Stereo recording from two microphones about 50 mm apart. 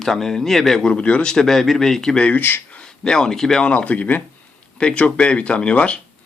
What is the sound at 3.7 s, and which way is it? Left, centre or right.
A man's voice, left.